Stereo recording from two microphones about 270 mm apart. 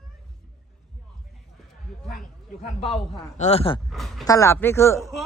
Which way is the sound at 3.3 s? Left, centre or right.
Left.